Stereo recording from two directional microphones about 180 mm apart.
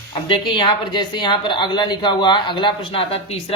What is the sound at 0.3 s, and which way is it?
A woman's voice, 25° left (ahead or behind).